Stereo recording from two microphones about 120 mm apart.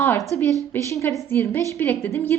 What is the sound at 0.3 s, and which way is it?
A woman's voice, 25° left (ahead or behind).